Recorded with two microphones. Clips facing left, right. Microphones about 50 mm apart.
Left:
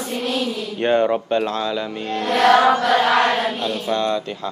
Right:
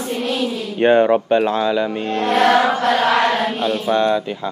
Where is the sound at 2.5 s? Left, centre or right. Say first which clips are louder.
Left 1 dB; left.